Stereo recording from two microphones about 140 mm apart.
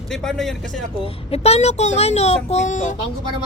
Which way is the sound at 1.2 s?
45° left (ahead or behind).